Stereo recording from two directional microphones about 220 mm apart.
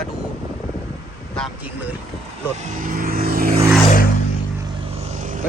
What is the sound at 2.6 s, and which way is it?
Vehicle, 40° right (ahead or behind).